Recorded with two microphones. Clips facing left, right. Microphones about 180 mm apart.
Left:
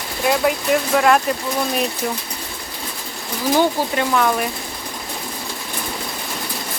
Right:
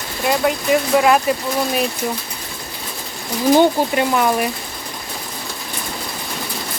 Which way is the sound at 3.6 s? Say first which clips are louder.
Right 3 dB; 15° right (ahead or behind).